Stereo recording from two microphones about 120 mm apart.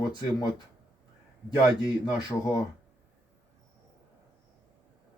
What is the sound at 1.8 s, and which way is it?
Speech, 35° left (ahead or behind).